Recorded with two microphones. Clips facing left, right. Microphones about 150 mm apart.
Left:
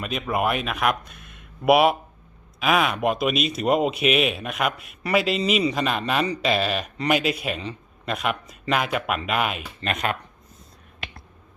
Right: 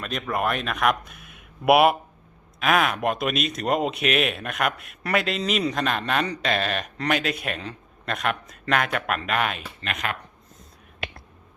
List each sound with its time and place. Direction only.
0.0 s speech: 5° left (ahead or behind)
9.8 s speech: 25° left (ahead or behind)